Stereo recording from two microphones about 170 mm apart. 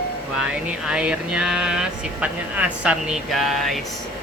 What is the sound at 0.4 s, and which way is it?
Speech, 5° right (ahead or behind).